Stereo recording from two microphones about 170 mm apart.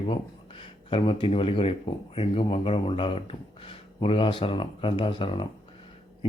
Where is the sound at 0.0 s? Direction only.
30° left (ahead or behind).